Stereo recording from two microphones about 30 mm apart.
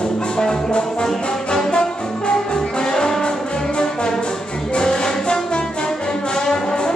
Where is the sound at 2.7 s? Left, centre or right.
Left.